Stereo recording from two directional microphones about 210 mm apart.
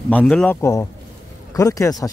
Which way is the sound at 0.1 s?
5° left (ahead or behind).